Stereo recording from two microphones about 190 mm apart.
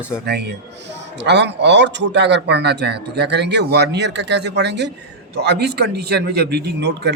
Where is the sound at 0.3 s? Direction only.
60° right (ahead or behind).